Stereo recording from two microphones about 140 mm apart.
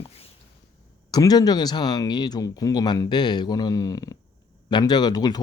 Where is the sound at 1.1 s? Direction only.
30° left (ahead or behind).